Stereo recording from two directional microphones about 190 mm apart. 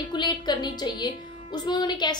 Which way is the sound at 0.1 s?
20° left (ahead or behind).